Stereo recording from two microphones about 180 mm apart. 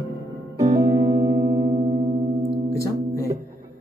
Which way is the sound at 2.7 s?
15° left (ahead or behind).